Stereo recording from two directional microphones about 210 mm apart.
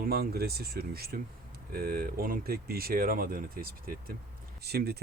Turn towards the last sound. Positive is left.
turn(degrees=-50)  # may be behind; listen again after turning